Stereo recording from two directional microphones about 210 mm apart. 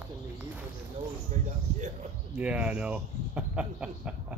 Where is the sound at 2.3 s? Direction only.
5° right (ahead or behind).